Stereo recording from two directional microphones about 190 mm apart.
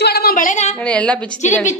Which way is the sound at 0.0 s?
55° left (ahead or behind).